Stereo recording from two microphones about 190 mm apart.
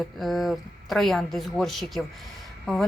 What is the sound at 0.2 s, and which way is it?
Speech, centre (ahead or behind).